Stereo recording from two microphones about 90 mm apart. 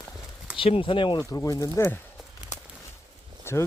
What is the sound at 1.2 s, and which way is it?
Speech, 40° left (ahead or behind).